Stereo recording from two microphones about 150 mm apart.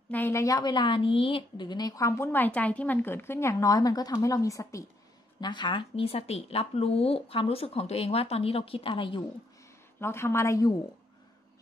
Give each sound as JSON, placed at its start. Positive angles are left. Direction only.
{"t": 0.1, "sound": "a woman's voice", "side_deg": 15}
{"t": 9.9, "sound": "a woman's voice", "side_deg": 15}